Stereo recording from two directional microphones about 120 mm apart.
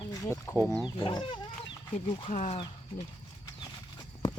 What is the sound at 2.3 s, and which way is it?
Speech, 75° left (ahead or behind).